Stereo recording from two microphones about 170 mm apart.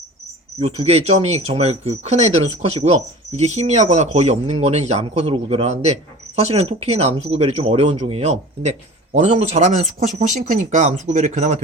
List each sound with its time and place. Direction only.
0.6 s speech: 35° right (ahead or behind)